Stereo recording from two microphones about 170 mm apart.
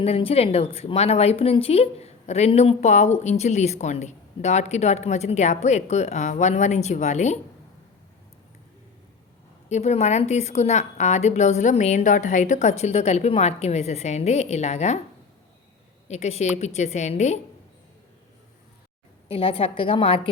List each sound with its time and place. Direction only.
0.0 s speech: 35° left (ahead or behind)
9.6 s speech: 40° left (ahead or behind)
16.0 s a woman's voice: 40° left (ahead or behind)
19.3 s speech: 30° left (ahead or behind)